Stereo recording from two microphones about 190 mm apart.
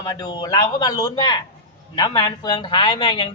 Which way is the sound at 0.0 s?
20° left (ahead or behind).